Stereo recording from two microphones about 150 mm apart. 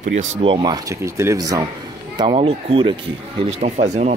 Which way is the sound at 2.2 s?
35° right (ahead or behind).